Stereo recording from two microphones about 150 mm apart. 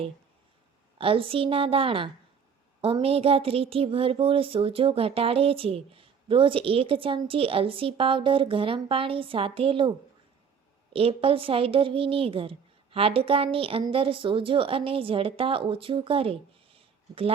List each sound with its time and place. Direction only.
0.9 s speech: 35° right (ahead or behind)
10.9 s speech: 40° right (ahead or behind)